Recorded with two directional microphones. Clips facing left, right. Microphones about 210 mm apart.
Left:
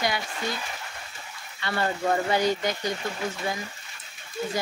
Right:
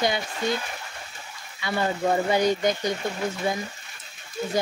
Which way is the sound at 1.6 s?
10° right (ahead or behind).